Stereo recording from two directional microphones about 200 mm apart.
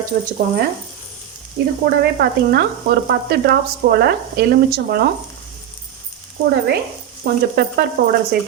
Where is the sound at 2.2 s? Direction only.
50° right (ahead or behind).